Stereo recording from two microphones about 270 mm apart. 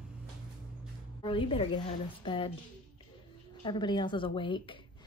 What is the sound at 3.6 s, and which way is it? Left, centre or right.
A woman's voice, centre.